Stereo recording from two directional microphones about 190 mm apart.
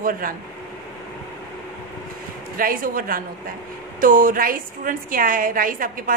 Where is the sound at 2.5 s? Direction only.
50° right (ahead or behind).